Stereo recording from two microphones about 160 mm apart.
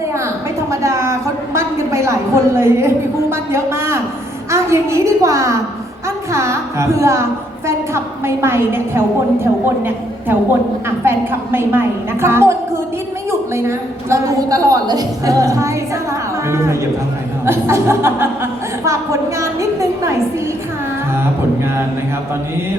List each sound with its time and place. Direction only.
0.7 s a sound: 20° right (ahead or behind)
2.6 s a woman's voice: 15° right (ahead or behind)
17.4 s a woman's voice: 15° right (ahead or behind)